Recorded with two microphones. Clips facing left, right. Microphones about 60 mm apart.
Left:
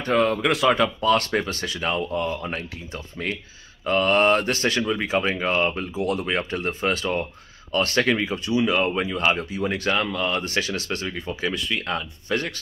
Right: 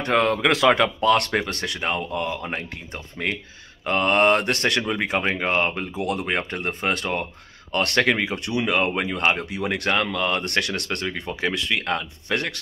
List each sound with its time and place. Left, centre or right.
0.0 s speech: right
2.4 s speech: right
9.5 s speech: right
11.8 s speech: right